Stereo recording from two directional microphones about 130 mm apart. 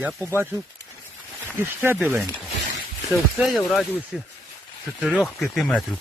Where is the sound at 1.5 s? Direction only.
20° right (ahead or behind).